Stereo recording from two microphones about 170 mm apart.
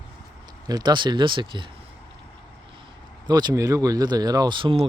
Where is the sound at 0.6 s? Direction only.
25° right (ahead or behind).